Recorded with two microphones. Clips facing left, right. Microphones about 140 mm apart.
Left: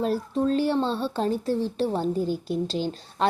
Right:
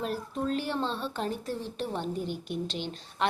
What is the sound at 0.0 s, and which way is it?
A child's voice, 30° left (ahead or behind).